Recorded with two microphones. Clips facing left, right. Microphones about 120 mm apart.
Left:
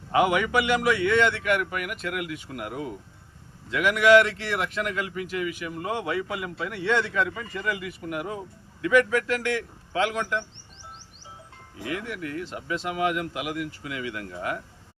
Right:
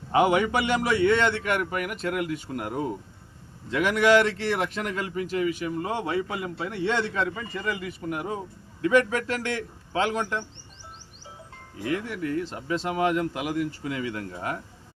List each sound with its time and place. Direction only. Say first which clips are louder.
0.1 s speech: right 1 dB; 30° right (ahead or behind)
11.8 s speech: right 3 dB; 35° right (ahead or behind)